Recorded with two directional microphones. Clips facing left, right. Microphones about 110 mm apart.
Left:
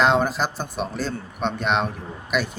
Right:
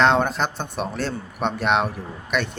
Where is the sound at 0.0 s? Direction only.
5° left (ahead or behind).